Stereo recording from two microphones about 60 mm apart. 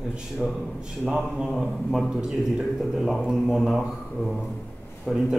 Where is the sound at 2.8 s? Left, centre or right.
Centre.